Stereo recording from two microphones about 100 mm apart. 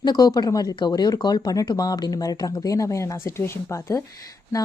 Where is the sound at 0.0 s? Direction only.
45° left (ahead or behind).